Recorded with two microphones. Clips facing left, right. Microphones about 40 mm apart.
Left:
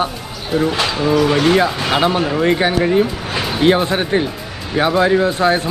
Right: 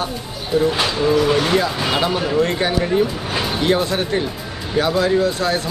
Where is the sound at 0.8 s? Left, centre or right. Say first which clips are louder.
Left 1 dB; centre.